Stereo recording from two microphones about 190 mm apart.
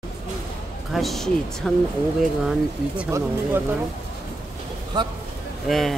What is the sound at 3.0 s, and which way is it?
Speech, 15° right (ahead or behind).